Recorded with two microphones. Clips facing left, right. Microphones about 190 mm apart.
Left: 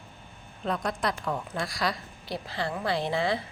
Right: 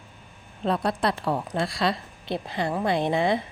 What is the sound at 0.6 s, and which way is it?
A woman's voice, 30° right (ahead or behind).